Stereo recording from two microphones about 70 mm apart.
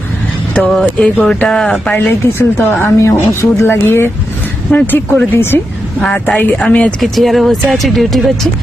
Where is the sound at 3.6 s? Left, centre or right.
Left.